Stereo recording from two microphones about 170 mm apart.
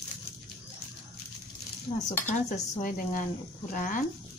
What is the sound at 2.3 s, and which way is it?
Cutlery, 50° left (ahead or behind).